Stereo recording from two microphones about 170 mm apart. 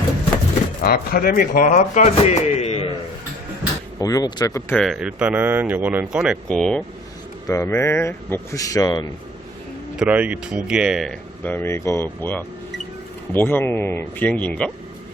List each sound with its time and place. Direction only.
0.8 s a man's voice: 60° left (ahead or behind); by 2.9 s 35° left (ahead or behind)
4.0 s speech: 20° left (ahead or behind)
4.7 s speech: centre (ahead or behind)
6.5 s speech: 5° left (ahead or behind)
7.4 s speech: 15° left (ahead or behind)
10.0 s speech: 10° right (ahead or behind)
11.4 s speech: 10° left (ahead or behind)